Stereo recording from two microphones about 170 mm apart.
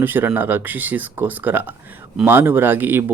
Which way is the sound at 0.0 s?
10° right (ahead or behind).